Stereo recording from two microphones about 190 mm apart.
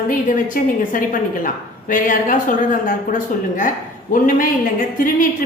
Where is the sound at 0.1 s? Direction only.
45° left (ahead or behind).